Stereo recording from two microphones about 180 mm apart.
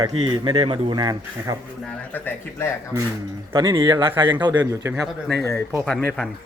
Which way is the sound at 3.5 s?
25° right (ahead or behind).